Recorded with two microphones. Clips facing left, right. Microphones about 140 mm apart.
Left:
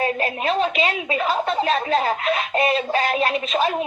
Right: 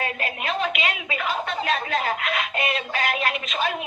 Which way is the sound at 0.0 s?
35° left (ahead or behind).